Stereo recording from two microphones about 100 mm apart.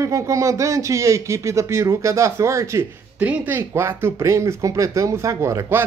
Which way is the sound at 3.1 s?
15° right (ahead or behind).